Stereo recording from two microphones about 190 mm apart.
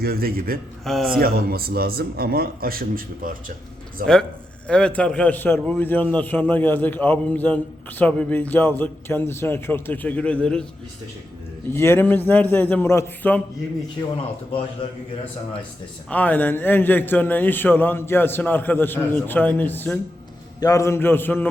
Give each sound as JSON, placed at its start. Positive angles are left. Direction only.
{"t": 0.0, "sound": "a man's voice", "side_deg": -55}
{"t": 0.9, "sound": "speech", "side_deg": 0}
{"t": 1.2, "sound": "a man's voice", "side_deg": -50}
{"t": 4.0, "sound": "a man's voice", "side_deg": 5}
{"t": 11.7, "sound": "a man's voice", "side_deg": 10}
{"t": 16.0, "sound": "a man's voice", "side_deg": 10}